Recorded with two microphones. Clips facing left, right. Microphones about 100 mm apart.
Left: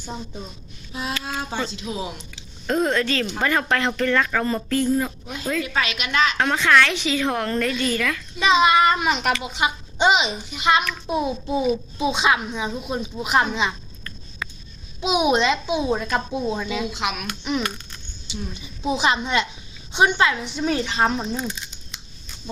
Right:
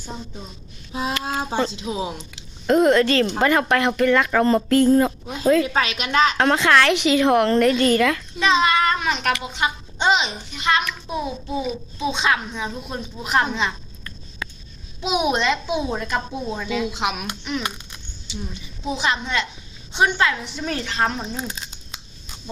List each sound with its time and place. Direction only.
0.9 s speech: 30° right (ahead or behind)
4.4 s speech: 30° right (ahead or behind)
8.4 s a child's voice: 10° left (ahead or behind)
15.0 s a child's voice: 5° left (ahead or behind)
17.0 s speech: 20° right (ahead or behind)
18.9 s a child's voice: 15° left (ahead or behind)